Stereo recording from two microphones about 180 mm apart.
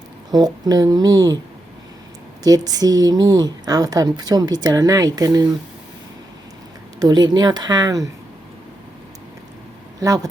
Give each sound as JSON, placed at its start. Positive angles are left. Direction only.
{"t": 0.3, "sound": "speech", "side_deg": -20}
{"t": 2.4, "sound": "speech", "side_deg": -20}
{"t": 7.0, "sound": "speech", "side_deg": -20}